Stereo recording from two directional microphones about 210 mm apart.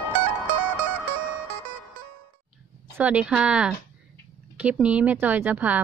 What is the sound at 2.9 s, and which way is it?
A woman's voice, 5° right (ahead or behind).